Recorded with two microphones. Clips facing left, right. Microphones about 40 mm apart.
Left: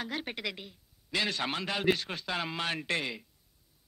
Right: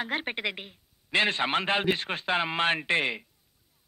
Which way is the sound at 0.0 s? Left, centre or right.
Right.